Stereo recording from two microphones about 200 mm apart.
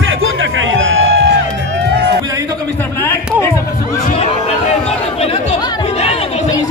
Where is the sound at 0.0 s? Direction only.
80° right.